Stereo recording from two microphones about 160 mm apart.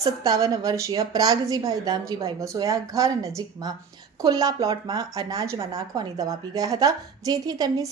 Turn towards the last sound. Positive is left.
turn(degrees=-25)  # may be behind; listen again after turning